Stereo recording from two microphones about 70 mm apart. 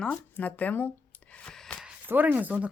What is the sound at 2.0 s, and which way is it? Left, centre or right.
Speech, right.